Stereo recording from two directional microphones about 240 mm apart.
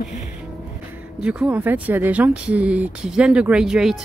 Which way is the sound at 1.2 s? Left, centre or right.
Centre.